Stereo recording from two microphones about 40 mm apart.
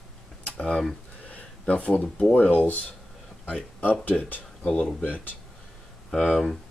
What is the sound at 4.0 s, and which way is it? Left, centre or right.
Speech, left.